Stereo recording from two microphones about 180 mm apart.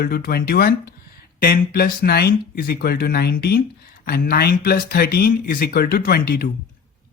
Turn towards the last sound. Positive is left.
turn(degrees=55)  # may be behind; listen again after turning